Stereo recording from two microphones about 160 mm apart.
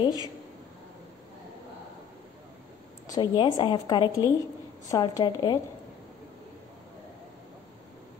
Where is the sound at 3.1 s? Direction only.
25° left (ahead or behind).